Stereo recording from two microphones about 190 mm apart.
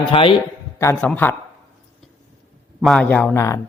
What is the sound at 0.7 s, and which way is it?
Speech, 15° left (ahead or behind).